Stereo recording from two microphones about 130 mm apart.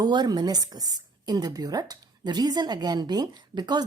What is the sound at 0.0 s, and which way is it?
A woman's voice, 30° right (ahead or behind).